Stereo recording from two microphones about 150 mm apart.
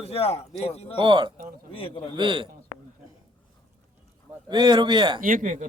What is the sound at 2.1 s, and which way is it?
Speech, 35° right (ahead or behind).